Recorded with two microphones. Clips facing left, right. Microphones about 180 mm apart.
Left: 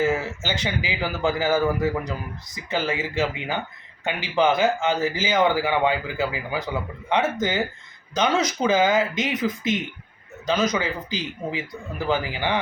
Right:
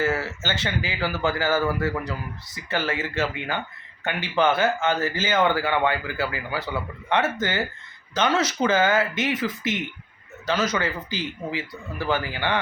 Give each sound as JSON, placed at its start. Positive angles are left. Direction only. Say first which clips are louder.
{"t": 0.0, "sound": "a man's voice", "louder": "left 2 dB", "side_deg": 15}